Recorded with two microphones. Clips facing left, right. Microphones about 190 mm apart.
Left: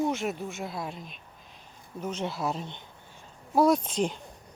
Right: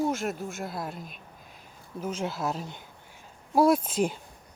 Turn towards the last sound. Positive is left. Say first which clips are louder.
# right 1 dB
turn(degrees=-5)  # may be behind; listen again after turning